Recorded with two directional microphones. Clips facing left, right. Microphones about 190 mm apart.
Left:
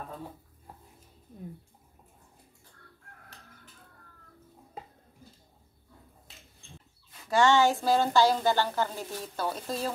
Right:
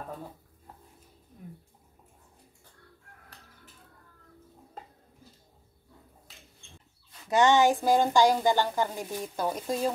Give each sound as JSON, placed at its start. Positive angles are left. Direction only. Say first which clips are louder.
{"t": 7.2, "sound": "a woman's voice", "louder": "right 1 dB", "side_deg": -20}